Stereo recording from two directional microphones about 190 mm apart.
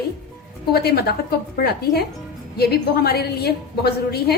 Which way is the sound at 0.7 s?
55° left (ahead or behind).